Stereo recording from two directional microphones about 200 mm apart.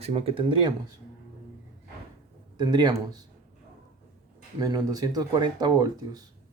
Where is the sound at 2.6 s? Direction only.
20° right (ahead or behind).